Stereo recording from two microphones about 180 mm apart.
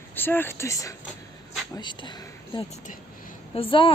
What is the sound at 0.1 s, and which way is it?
Speech, 10° left (ahead or behind).